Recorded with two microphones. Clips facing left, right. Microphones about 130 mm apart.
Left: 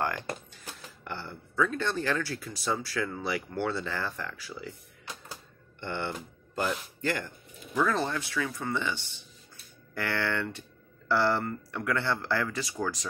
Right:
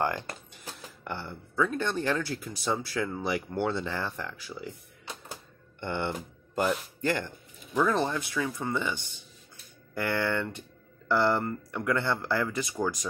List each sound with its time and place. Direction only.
1.0 s speech: 15° right (ahead or behind)
7.0 s speech: 25° right (ahead or behind)